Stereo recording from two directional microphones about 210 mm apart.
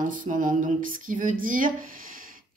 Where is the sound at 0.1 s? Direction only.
40° right (ahead or behind).